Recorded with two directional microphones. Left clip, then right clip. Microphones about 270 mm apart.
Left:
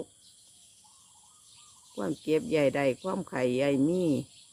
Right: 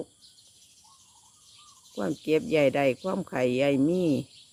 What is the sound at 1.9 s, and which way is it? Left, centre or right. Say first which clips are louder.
Speech: right 2 dB; centre.